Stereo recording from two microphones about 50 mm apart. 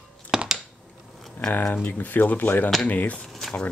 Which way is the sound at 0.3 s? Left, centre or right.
Centre.